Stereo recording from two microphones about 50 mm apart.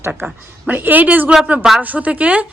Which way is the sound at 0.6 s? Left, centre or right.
Right.